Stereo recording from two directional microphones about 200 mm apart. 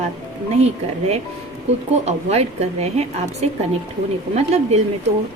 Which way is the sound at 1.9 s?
35° right (ahead or behind).